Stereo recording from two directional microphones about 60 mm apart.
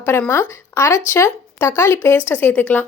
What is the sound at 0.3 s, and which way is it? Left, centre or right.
A woman's voice, left.